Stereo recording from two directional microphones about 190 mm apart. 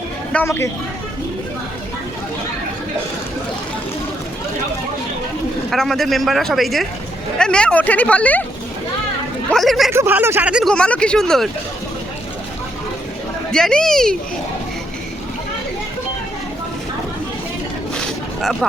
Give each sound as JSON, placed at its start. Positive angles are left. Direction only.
{"t": 0.3, "sound": "speech", "side_deg": 10}
{"t": 5.7, "sound": "speech", "side_deg": 0}
{"t": 9.5, "sound": "speech", "side_deg": 0}
{"t": 9.9, "sound": "speech", "side_deg": -10}
{"t": 13.5, "sound": "speech", "side_deg": 5}
{"t": 17.9, "sound": "a sound", "side_deg": 0}